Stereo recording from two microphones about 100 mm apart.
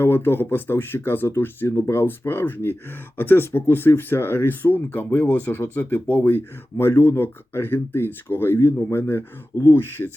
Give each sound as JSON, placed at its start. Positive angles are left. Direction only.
{"t": 0.0, "sound": "speech", "side_deg": 20}